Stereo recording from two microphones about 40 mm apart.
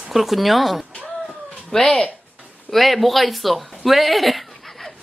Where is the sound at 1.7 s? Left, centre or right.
Centre.